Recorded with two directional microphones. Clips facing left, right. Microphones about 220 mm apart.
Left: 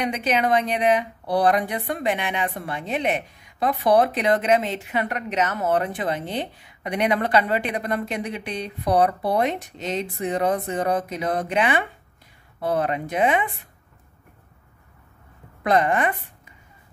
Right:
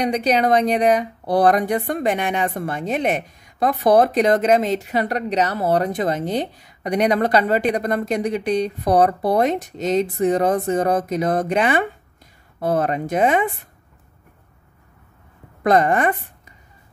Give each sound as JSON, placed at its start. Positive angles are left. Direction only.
{"t": 0.0, "sound": "speech", "side_deg": -40}
{"t": 15.6, "sound": "a woman's voice", "side_deg": -45}